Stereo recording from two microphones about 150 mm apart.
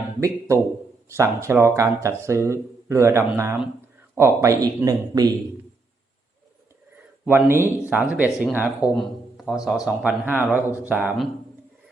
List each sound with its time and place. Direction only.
0.2 s speech: 20° right (ahead or behind)
7.3 s speech: 15° right (ahead or behind)
9.0 s a sound: centre (ahead or behind)
9.6 s speech: 5° right (ahead or behind)